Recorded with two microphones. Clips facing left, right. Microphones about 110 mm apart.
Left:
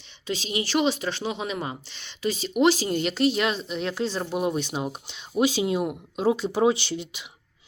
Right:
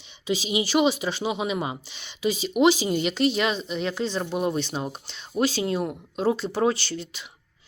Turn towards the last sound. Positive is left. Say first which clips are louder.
# left 1 dB
turn(degrees=15)  # may be behind; listen again after turning